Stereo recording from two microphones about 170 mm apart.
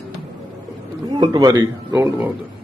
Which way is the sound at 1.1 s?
25° right (ahead or behind).